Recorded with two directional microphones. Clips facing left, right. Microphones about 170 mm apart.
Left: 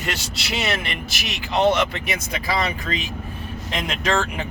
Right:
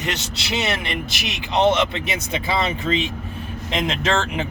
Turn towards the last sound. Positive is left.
turn(degrees=-25)  # may be behind; listen again after turning